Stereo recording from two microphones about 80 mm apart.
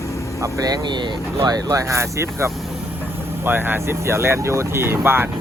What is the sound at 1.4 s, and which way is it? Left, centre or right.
Speech, right.